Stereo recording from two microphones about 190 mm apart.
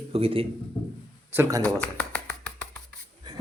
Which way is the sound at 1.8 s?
5° left (ahead or behind).